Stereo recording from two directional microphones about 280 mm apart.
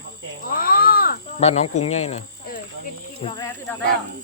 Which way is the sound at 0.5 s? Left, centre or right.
Left.